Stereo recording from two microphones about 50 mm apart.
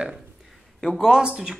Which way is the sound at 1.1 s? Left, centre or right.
Centre.